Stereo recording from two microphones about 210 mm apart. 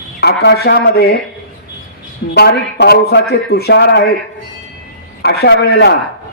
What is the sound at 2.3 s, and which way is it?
A man's voice, 50° left (ahead or behind).